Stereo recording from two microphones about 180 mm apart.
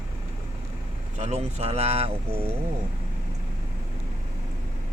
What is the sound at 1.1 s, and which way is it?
Speech, 35° right (ahead or behind).